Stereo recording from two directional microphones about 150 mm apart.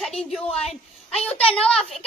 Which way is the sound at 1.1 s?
40° left (ahead or behind).